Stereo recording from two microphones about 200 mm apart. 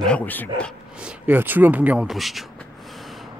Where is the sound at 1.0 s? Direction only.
5° right (ahead or behind).